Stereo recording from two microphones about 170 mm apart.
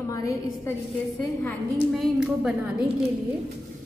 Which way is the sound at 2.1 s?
Centre (ahead or behind).